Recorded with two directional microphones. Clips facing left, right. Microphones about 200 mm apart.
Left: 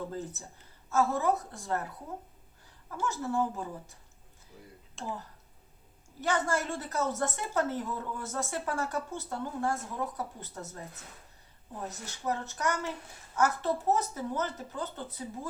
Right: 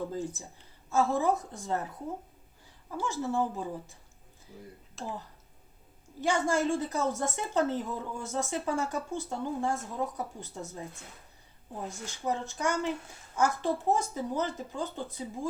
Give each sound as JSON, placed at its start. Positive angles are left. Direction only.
{"t": 0.1, "sound": "a woman's voice", "side_deg": -15}
{"t": 3.0, "sound": "a woman's voice", "side_deg": -15}
{"t": 5.0, "sound": "speech", "side_deg": 0}
{"t": 6.1, "sound": "a woman's voice", "side_deg": -15}
{"t": 11.9, "sound": "a woman's voice", "side_deg": -15}